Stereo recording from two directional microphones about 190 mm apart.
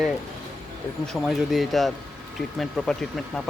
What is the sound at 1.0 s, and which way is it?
Speech, centre (ahead or behind).